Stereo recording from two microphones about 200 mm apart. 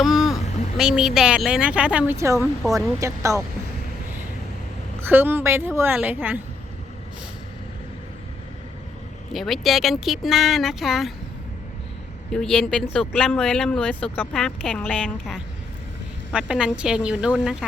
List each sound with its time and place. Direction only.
0.0 s vehicle: centre (ahead or behind)
0.8 s a woman's voice: 5° right (ahead or behind)
4.9 s a woman's voice: 10° right (ahead or behind)
9.3 s speech: centre (ahead or behind)
12.3 s speech: 5° left (ahead or behind)